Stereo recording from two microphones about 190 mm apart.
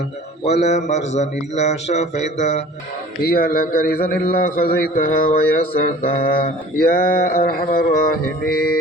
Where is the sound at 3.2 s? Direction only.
50° left (ahead or behind).